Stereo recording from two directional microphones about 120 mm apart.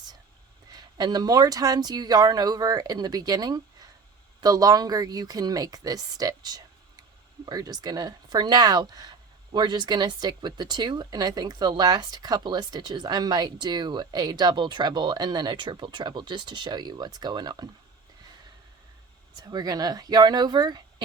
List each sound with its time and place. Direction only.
0.7 s speech: 35° right (ahead or behind)
19.4 s speech: 35° right (ahead or behind)